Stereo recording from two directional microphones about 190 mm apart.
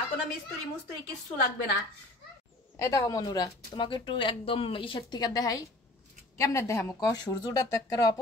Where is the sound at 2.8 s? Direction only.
20° left (ahead or behind).